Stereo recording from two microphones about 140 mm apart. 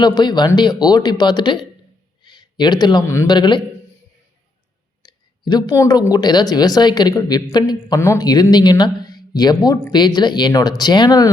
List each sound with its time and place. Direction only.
0.0 s a woman's voice: 30° left (ahead or behind)
5.0 s a sound: 30° left (ahead or behind)
6.1 s a woman's voice: 30° left (ahead or behind)